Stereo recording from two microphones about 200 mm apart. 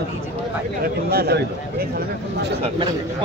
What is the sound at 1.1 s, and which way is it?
Speech, 50° right (ahead or behind).